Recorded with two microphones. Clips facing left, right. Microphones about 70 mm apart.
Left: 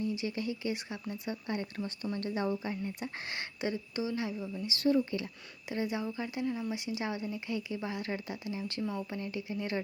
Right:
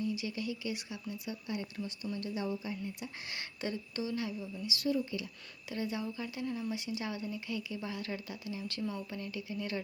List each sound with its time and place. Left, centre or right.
0.0 s speech: left
3.6 s speech: centre; by 5.3 s left
5.6 s speech: left